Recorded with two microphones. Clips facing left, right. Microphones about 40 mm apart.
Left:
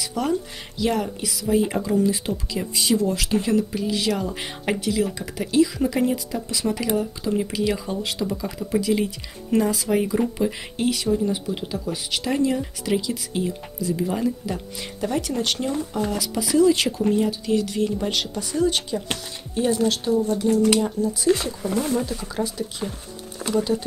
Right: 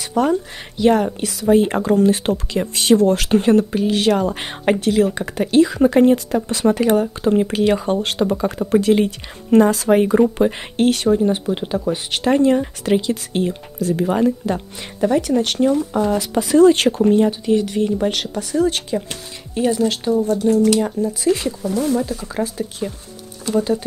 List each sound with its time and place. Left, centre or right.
0.1 s speech: right
15.1 s speech: right
17.1 s speech: right
18.3 s speech: right
21.6 s speech: left
21.9 s speech: right